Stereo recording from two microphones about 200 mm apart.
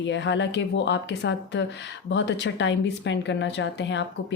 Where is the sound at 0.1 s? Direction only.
65° left (ahead or behind).